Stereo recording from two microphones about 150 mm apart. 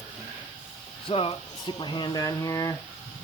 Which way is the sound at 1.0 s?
40° left (ahead or behind).